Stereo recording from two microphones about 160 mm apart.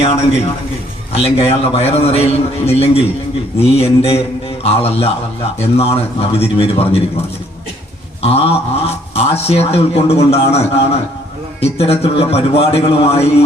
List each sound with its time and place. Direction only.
1.1 s speech: 40° left (ahead or behind)
8.2 s speech: 35° left (ahead or behind)